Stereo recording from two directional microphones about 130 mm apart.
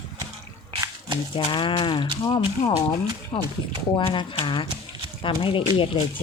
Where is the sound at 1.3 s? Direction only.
40° left (ahead or behind).